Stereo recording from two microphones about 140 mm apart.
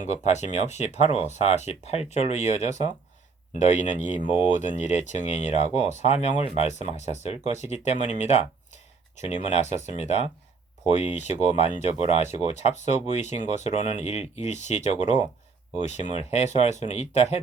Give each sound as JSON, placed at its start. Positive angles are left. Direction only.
{"t": 0.0, "sound": "speech", "side_deg": 55}